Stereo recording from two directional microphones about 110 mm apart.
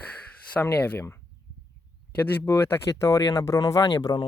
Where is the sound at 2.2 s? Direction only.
20° left (ahead or behind).